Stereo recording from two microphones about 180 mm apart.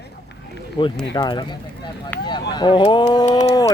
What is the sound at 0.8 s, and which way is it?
Speech, 20° left (ahead or behind).